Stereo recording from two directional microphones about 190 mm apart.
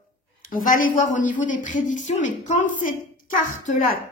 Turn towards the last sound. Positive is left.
turn(degrees=40)  # may be behind; listen again after turning